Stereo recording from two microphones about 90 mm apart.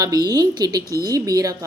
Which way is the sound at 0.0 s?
45° right (ahead or behind).